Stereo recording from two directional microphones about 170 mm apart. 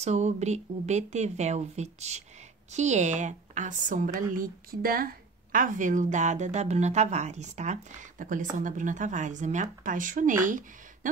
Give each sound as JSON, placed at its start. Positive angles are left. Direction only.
{"t": 0.0, "sound": "a woman's voice", "side_deg": -40}